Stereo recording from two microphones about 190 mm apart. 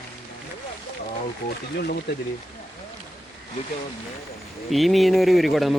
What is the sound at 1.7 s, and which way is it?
Speech, 60° left (ahead or behind).